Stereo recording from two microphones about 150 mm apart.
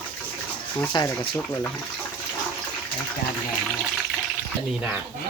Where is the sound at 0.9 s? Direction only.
30° left (ahead or behind).